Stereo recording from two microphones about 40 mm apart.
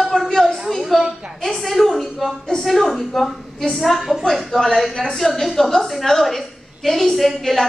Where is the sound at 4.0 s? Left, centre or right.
Centre.